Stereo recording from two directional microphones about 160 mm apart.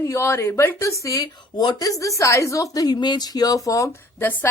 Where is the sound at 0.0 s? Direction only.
15° left (ahead or behind).